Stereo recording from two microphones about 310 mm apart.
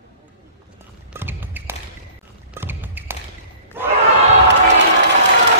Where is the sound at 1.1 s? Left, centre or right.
Centre.